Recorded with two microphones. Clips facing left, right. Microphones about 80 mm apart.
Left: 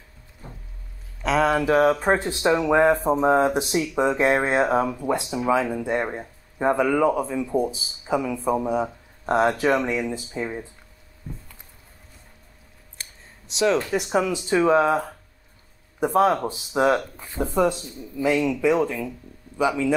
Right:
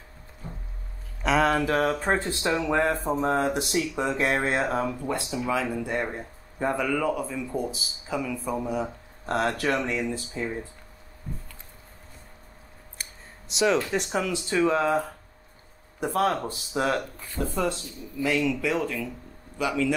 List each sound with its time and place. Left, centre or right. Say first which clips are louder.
1.2 s a sound: left 2 dB; centre
1.5 s speech: left 5 dB; centre
13.6 s speech: left 2 dB; centre
14.0 s speech: left 5 dB; centre